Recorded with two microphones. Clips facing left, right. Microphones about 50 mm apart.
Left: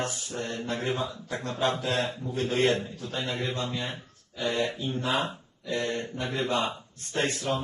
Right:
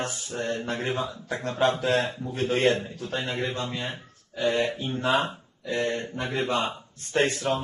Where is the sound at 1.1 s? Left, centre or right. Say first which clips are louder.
Right 2 dB; centre.